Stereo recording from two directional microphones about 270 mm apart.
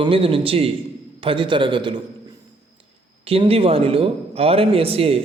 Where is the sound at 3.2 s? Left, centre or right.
Right.